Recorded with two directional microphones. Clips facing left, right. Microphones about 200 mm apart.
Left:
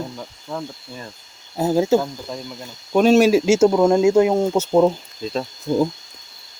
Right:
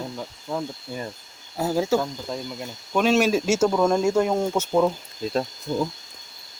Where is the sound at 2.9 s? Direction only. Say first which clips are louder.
Left 6 dB; 40° left (ahead or behind).